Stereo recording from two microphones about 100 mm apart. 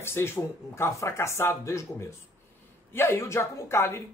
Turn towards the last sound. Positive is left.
turn(degrees=25)  # may be behind; listen again after turning